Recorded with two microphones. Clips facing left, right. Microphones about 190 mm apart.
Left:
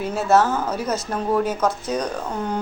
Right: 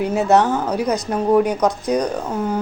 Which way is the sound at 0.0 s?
15° right (ahead or behind).